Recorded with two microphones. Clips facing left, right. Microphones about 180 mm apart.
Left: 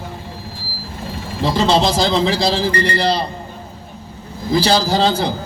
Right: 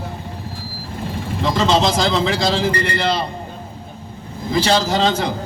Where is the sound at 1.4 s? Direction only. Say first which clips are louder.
Left 1 dB; 35° left (ahead or behind).